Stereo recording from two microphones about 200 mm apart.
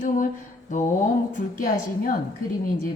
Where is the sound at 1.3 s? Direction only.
40° left (ahead or behind).